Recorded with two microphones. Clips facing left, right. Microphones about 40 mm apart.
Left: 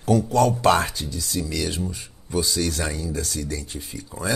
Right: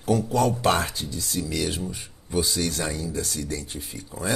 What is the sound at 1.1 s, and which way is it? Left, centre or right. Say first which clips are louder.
Speech: left 1 dB; right.